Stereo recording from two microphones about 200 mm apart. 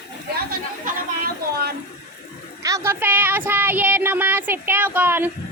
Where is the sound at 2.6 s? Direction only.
15° right (ahead or behind).